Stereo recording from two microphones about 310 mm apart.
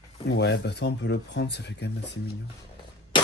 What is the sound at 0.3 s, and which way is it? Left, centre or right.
Speech, left.